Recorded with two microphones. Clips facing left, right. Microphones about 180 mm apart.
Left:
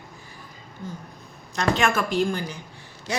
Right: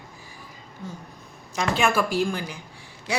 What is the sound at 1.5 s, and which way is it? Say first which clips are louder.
A woman's voice: even; 5° right (ahead or behind).